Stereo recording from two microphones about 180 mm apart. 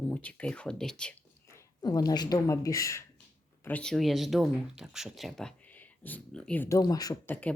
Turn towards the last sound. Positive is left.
turn(degrees=10)  # may be behind; listen again after turning